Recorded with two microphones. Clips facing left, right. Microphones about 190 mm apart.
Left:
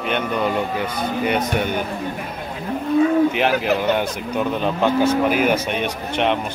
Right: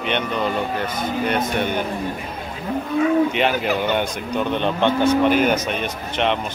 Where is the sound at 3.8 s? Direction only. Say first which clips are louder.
Left 1 dB; centre (ahead or behind).